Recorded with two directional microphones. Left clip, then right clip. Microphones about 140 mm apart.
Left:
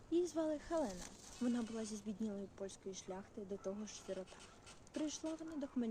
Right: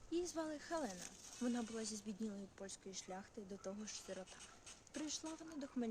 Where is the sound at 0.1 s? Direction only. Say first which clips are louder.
Left 6 dB; 20° right (ahead or behind).